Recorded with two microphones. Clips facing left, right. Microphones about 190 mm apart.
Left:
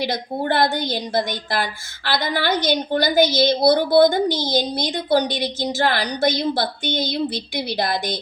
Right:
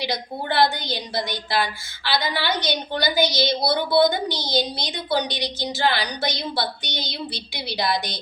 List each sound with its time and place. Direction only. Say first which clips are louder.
0.0 s a woman's voice: left 4 dB; 50° left (ahead or behind)